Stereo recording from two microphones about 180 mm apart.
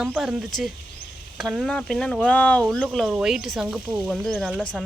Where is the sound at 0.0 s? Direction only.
5° right (ahead or behind).